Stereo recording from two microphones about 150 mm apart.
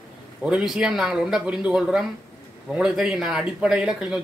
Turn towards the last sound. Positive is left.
turn(degrees=-5)  # may be behind; listen again after turning